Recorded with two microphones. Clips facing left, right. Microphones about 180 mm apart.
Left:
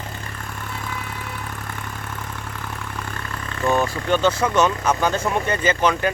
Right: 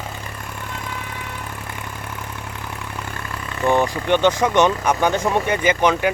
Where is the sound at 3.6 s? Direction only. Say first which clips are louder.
Right 2 dB; 20° right (ahead or behind).